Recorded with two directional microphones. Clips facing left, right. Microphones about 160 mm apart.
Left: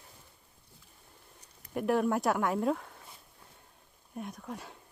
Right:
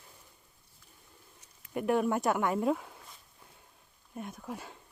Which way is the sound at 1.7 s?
Centre (ahead or behind).